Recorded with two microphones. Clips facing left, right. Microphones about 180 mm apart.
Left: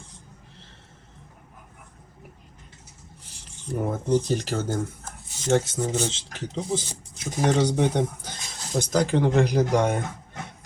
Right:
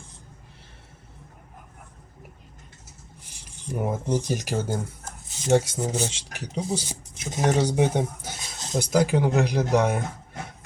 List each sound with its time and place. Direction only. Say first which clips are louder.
3.4 s speech: left 1 dB; 10° right (ahead or behind)
7.4 s speech: even; 10° right (ahead or behind)